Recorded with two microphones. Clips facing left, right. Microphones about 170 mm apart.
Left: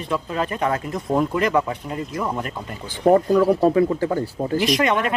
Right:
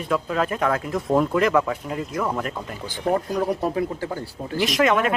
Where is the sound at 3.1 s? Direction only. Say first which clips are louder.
Left 7 dB; 60° left (ahead or behind).